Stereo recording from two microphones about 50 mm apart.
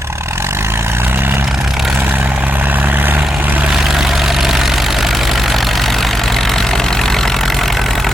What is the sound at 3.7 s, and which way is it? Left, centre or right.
Vehicle, centre.